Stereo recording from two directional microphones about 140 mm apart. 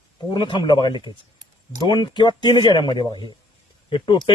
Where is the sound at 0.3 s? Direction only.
35° left (ahead or behind).